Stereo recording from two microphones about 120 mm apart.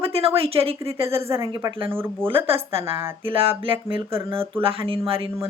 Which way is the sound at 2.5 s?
50° right (ahead or behind).